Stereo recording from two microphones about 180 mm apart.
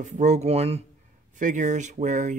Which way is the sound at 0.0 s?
40° right (ahead or behind).